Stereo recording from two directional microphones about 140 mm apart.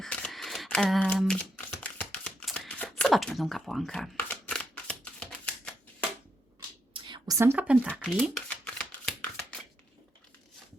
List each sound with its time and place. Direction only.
0.0 s single-lens reflex camera: 5° left (ahead or behind)
1.2 s typewriter: 5° left (ahead or behind)
4.3 s shuffling cards: 10° left (ahead or behind)
6.9 s a sound: 35° right (ahead or behind)
7.3 s speech: 15° right (ahead or behind)
7.9 s speech: 5° left (ahead or behind)
8.2 s shuffling cards: 5° left (ahead or behind)